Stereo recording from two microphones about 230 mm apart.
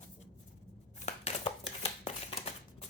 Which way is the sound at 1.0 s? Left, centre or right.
Left.